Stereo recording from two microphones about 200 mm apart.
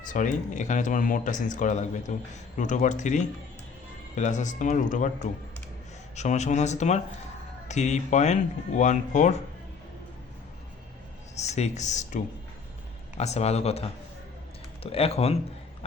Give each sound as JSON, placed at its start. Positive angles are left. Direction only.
{"t": 0.1, "sound": "speech", "side_deg": 40}
{"t": 6.1, "sound": "speech", "side_deg": 35}
{"t": 11.3, "sound": "speech", "side_deg": 35}
{"t": 14.8, "sound": "speech", "side_deg": 30}